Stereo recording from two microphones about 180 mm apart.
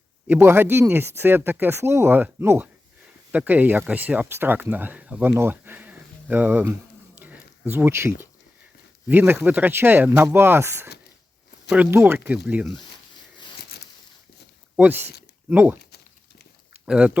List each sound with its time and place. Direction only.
0.3 s speech: 10° right (ahead or behind)
7.2 s a sound: 10° right (ahead or behind)
9.0 s speech: 10° right (ahead or behind)
13.6 s a sound: 65° left (ahead or behind)
14.8 s speech: 10° right (ahead or behind)
16.8 s speech: 5° right (ahead or behind)